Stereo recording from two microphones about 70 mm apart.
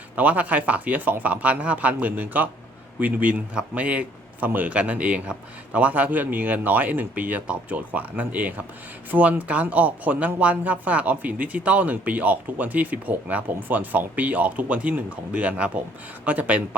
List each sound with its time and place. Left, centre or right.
0.2 s speech: right